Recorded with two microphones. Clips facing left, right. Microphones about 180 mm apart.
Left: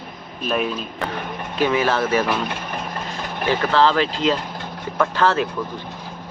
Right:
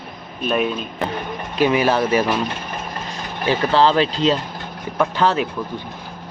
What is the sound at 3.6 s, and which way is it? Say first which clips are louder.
Speech: right 2 dB; 20° right (ahead or behind).